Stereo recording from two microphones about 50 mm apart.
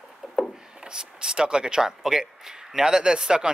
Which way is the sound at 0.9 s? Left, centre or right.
Centre.